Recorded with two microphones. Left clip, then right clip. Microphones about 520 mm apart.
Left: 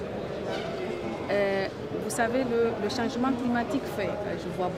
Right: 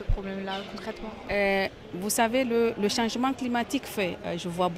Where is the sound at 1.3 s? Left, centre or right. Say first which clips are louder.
Right 2 dB; right.